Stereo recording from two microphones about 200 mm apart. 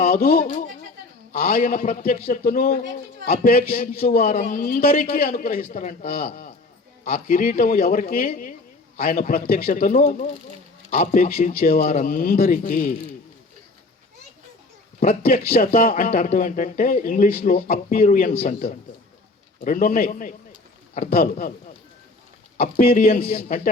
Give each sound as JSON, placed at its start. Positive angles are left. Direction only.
{"t": 0.0, "sound": "a man's voice", "side_deg": 50}
{"t": 15.2, "sound": "speech", "side_deg": 45}
{"t": 22.5, "sound": "speech", "side_deg": 50}